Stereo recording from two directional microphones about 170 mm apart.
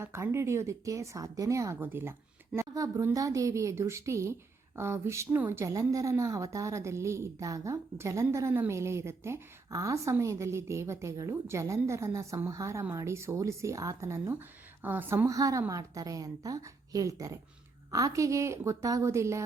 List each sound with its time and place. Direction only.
0.0 s a woman's voice: 15° right (ahead or behind)